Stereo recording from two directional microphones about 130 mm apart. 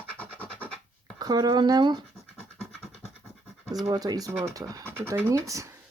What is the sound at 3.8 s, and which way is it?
Speech, 30° right (ahead or behind).